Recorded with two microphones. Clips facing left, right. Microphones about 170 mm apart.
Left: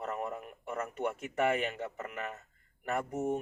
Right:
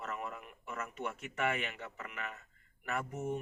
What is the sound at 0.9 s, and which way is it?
Speech, 50° left (ahead or behind).